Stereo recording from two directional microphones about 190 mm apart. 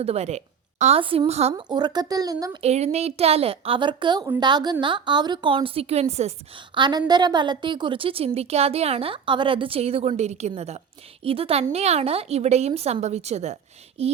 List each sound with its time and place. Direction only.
0.0 s speech: 35° right (ahead or behind)
1.7 s a woman's voice: 20° right (ahead or behind)
2.6 s a woman's voice: 35° right (ahead or behind)
6.7 s a woman's voice: 25° right (ahead or behind)